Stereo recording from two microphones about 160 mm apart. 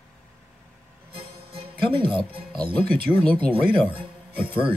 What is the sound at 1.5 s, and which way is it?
Speech, 35° right (ahead or behind).